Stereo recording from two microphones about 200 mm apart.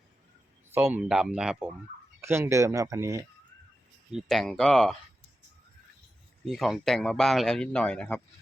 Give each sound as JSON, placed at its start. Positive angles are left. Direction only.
{"t": 0.7, "sound": "a man's voice", "side_deg": -10}
{"t": 4.1, "sound": "a man's voice", "side_deg": 0}
{"t": 6.4, "sound": "a man's voice", "side_deg": 0}